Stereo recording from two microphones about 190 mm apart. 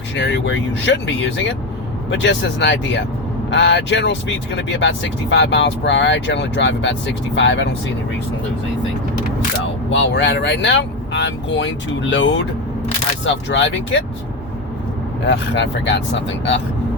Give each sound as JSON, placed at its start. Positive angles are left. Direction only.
{"t": 0.2, "sound": "speech", "side_deg": 70}
{"t": 9.9, "sound": "speech", "side_deg": 75}
{"t": 15.3, "sound": "speech", "side_deg": 65}